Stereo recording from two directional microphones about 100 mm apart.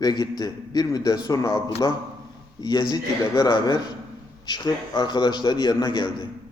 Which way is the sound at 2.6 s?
45° left (ahead or behind).